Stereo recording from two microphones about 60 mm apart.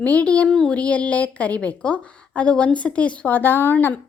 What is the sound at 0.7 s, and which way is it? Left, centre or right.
Speech, left.